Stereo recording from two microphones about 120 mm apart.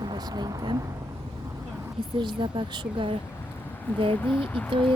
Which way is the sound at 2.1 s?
40° right (ahead or behind).